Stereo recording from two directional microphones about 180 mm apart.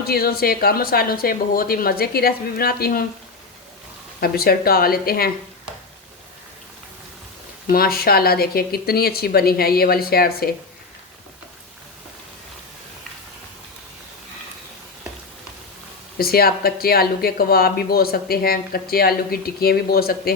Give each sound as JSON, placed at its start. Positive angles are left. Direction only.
{"t": 0.0, "sound": "speech", "side_deg": 55}
{"t": 4.2, "sound": "speech", "side_deg": 55}
{"t": 7.7, "sound": "speech", "side_deg": 55}
{"t": 16.1, "sound": "speech", "side_deg": 55}